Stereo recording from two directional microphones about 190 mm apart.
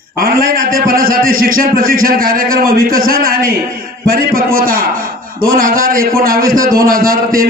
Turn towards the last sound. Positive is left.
turn(degrees=-50)  # may be behind; listen again after turning